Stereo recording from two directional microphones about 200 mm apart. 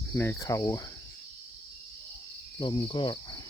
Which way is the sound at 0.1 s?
10° left (ahead or behind).